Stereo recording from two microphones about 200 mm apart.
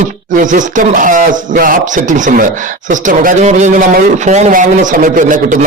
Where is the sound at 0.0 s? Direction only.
40° right (ahead or behind).